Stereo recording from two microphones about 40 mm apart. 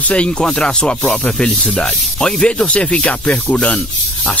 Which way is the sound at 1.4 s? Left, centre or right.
Left.